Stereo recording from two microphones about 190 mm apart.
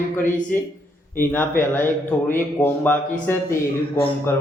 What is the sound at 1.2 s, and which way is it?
A man's voice, 10° left (ahead or behind).